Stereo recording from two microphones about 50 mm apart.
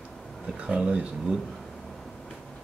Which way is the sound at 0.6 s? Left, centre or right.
Centre.